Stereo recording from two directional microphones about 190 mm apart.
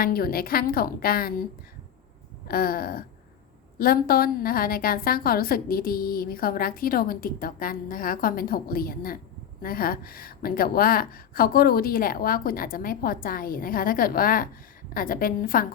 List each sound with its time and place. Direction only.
0.0 s a woman's voice: 50° left (ahead or behind)
2.5 s a woman's voice: 50° left (ahead or behind)